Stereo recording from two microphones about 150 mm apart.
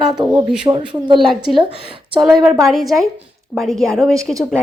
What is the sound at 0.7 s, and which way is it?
Speech, 25° right (ahead or behind).